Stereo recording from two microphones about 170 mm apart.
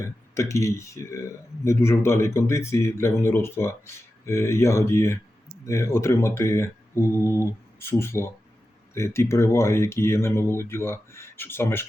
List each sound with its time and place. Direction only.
0.0 s speech: 15° left (ahead or behind)